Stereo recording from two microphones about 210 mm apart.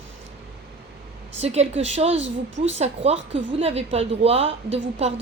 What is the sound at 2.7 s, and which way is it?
A woman's voice, 30° right (ahead or behind).